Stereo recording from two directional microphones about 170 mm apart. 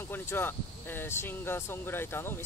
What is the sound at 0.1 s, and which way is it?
Speech, 10° left (ahead or behind).